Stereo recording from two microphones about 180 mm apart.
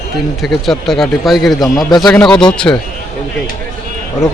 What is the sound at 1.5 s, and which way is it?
Speech, 20° left (ahead or behind).